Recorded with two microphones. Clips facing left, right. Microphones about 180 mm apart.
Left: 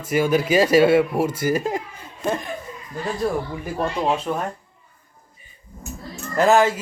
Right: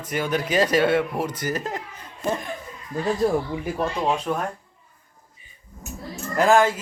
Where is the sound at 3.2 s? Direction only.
20° right (ahead or behind).